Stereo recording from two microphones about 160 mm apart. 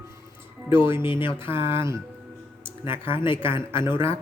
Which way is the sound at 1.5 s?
15° right (ahead or behind).